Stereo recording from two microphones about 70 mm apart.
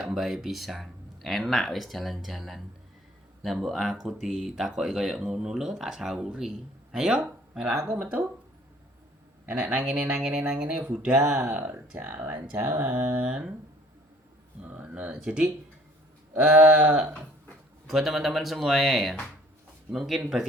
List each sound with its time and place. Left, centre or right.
0.0 s speech: centre
8.0 s speech: right
9.5 s speech: right
11.1 s speech: right
11.3 s speech: centre
14.6 s speech: right
17.8 s speech: centre